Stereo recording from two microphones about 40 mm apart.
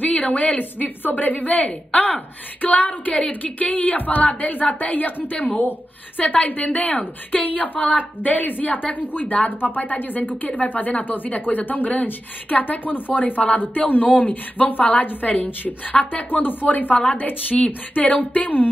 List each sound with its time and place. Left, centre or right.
0.0 s speech: left
17.2 s speech: left